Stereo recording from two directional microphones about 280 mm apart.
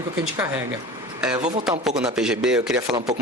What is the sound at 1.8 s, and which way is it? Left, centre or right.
A man's voice, centre.